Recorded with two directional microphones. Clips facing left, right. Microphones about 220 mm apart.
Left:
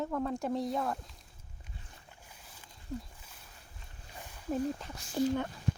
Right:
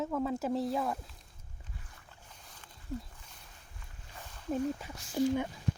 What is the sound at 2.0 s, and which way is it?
Boat, 10° left (ahead or behind).